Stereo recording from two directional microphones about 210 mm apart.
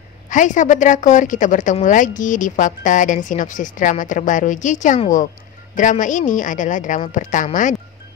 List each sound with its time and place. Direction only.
0.3 s a woman's voice: 35° left (ahead or behind)